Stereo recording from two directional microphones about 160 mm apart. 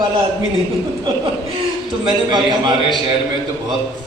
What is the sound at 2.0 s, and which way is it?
Speech, 25° right (ahead or behind).